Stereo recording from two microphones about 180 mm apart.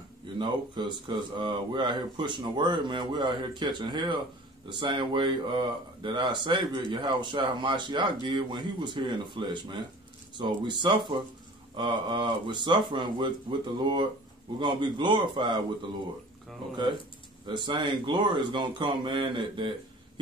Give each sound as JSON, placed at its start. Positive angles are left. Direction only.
{"t": 0.4, "sound": "speech", "side_deg": -25}
{"t": 17.5, "sound": "speech", "side_deg": -25}